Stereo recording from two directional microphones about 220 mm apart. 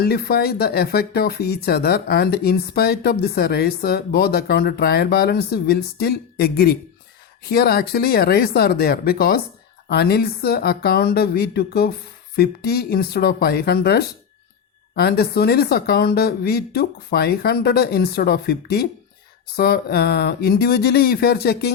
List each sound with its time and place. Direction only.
0.0 s speech: 45° left (ahead or behind)